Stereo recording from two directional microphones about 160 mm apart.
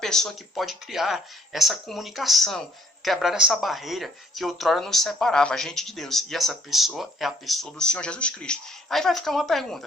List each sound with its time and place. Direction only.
0.0 s speech: 5° left (ahead or behind)